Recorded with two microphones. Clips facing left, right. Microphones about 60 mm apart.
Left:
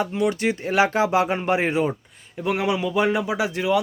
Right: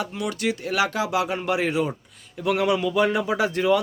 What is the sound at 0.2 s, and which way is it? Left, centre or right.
Speech, left.